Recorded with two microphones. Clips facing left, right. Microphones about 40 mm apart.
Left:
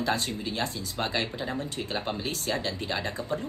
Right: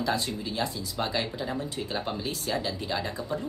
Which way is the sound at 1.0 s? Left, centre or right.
Left.